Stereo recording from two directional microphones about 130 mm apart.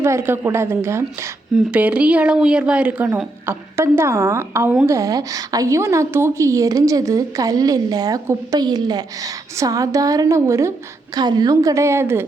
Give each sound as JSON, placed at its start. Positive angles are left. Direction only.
{"t": 0.0, "sound": "a woman's voice", "side_deg": -20}